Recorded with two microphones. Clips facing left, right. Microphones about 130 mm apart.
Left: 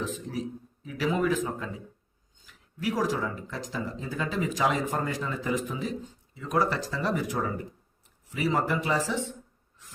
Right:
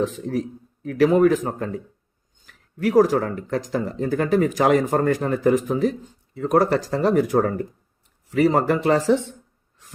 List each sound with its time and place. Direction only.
0.0 s speech: 60° right (ahead or behind)